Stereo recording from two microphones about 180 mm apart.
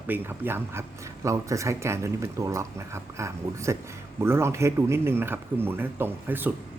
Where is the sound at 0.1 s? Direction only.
10° right (ahead or behind).